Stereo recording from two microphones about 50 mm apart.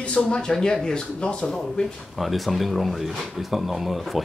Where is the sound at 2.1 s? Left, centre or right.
Centre.